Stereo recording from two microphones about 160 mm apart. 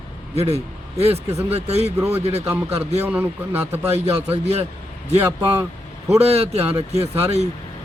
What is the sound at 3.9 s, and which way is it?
Speech, 40° right (ahead or behind).